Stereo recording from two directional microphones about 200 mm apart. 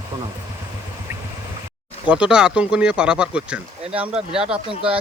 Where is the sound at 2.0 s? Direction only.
5° right (ahead or behind).